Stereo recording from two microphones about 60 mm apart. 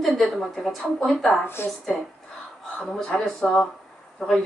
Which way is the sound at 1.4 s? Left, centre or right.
Left.